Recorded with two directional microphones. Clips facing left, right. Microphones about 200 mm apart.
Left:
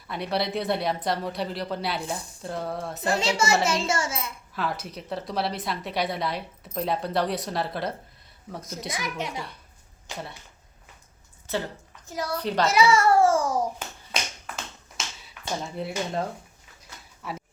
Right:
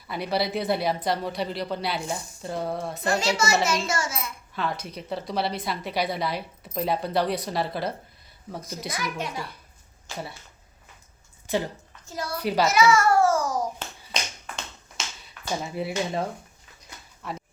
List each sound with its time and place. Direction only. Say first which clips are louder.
0.1 s a woman's voice: right 1 dB; centre (ahead or behind)
3.1 s a child's voice: even; 30° left (ahead or behind)
4.5 s a woman's voice: even; 5° left (ahead or behind)
8.9 s a child's voice: right 1 dB; 20° left (ahead or behind)
9.3 s a woman's voice: right 1 dB; centre (ahead or behind)
10.1 s speech: right 1 dB; 20° left (ahead or behind)
11.4 s a woman's voice: right 3 dB; 15° right (ahead or behind)
12.0 s a child's voice: left 2 dB; 15° left (ahead or behind)
12.4 s a child's voice: right 3 dB; 10° right (ahead or behind)
12.6 s babbling: even; 30° left (ahead or behind)
14.1 s finger snapping: left 1 dB; 5° left (ahead or behind)
17.2 s speech: even; 5° left (ahead or behind)